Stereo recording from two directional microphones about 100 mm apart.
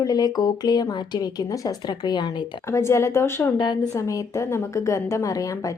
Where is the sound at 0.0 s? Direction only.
40° left (ahead or behind).